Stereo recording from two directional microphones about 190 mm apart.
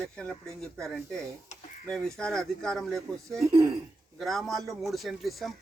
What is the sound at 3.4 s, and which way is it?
Speech, 15° right (ahead or behind).